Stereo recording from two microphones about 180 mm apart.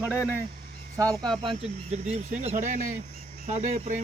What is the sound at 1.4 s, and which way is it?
Cricket, 35° right (ahead or behind).